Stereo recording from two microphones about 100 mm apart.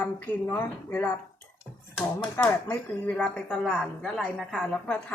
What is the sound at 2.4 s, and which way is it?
Speech, 15° left (ahead or behind).